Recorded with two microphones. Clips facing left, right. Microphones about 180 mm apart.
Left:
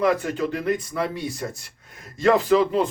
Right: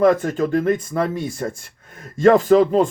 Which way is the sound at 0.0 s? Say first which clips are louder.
Right 5 dB; 45° right (ahead or behind).